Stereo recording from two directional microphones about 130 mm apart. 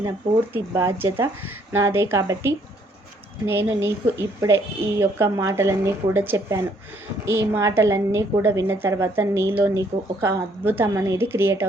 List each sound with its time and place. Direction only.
0.5 s a woman's voice: 20° right (ahead or behind)